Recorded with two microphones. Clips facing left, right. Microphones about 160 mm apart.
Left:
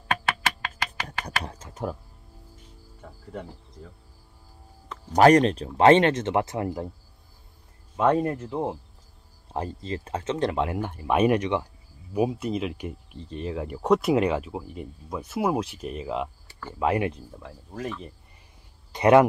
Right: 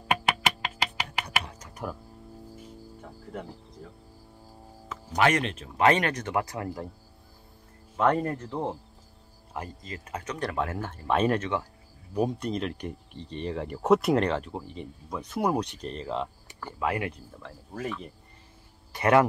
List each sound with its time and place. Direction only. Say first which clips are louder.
0.1 s music: right 1 dB; 15° right (ahead or behind)
1.4 s typing: left 5 dB; 30° left (ahead or behind)
2.5 s cricket: right 8 dB; 5° right (ahead or behind)
5.1 s speech: left 8 dB; 40° left (ahead or behind); by 6.9 s 20° left (ahead or behind)
7.9 s speech: left 3 dB; 10° left (ahead or behind)
9.5 s speech: left 7 dB; 30° left (ahead or behind); by 16.3 s 5° left (ahead or behind)
16.4 s a sound: left 1 dB; 15° right (ahead or behind)
16.8 s speech: left 5 dB; 20° left (ahead or behind)
17.7 s speech: left 1 dB; centre (ahead or behind)
18.9 s speech: left 5 dB; 20° left (ahead or behind)